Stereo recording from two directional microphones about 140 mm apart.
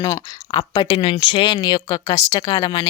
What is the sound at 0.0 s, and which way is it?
A woman's voice, 25° left (ahead or behind).